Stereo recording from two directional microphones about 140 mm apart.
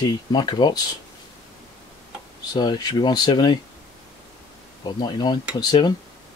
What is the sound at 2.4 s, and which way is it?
Speech, 30° left (ahead or behind).